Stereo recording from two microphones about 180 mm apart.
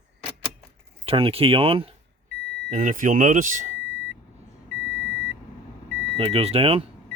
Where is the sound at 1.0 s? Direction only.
30° right (ahead or behind).